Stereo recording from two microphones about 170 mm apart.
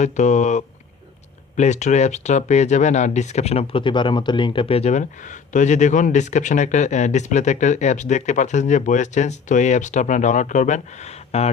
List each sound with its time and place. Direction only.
0.0 s speech: 45° left (ahead or behind)